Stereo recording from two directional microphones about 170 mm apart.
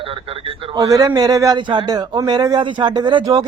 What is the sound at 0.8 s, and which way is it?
Speech, 20° right (ahead or behind).